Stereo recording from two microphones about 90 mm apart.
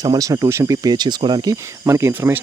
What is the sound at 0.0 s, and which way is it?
Speech, 45° right (ahead or behind).